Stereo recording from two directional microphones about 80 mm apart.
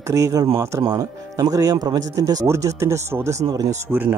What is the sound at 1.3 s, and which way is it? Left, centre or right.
Speech, right.